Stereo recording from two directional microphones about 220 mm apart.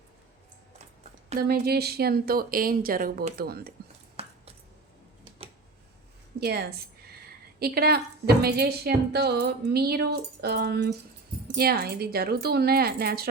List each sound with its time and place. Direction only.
1.5 s a woman's voice: 45° right (ahead or behind)
4.2 s a sound: 25° right (ahead or behind)
6.4 s a woman's voice: 45° right (ahead or behind)